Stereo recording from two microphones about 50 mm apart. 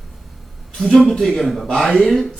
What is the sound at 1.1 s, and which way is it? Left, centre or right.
A man's voice, centre.